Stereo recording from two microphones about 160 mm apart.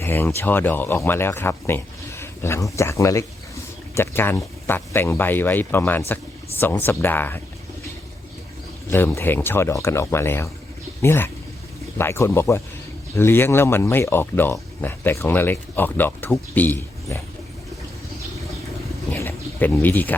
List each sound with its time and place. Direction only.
0.0 s speech: 15° left (ahead or behind)
8.9 s speech: 15° left (ahead or behind)
19.1 s bird: 15° left (ahead or behind)